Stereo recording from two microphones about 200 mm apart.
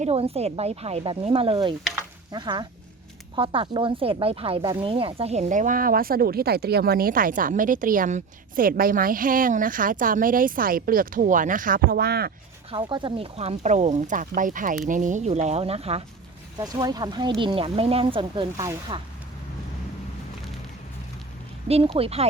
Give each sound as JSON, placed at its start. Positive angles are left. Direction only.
{"t": 0.0, "sound": "speech", "side_deg": -30}
{"t": 12.7, "sound": "speech", "side_deg": -25}
{"t": 21.9, "sound": "speech", "side_deg": -30}